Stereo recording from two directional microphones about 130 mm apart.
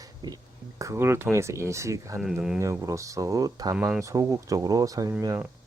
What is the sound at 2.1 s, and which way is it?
Speech, 5° right (ahead or behind).